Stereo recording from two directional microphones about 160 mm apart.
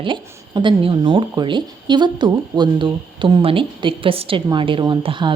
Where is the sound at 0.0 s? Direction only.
30° right (ahead or behind).